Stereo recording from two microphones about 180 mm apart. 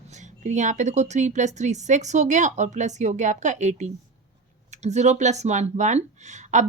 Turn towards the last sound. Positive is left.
turn(degrees=-40)  # may be behind; listen again after turning